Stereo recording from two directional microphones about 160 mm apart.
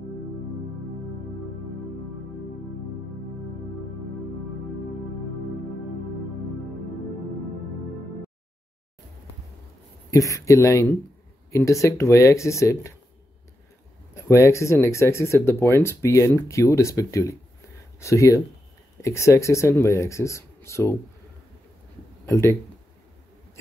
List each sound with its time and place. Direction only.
10.1 s speech: 20° left (ahead or behind)
14.1 s speech: 20° left (ahead or behind)
22.2 s speech: 15° left (ahead or behind)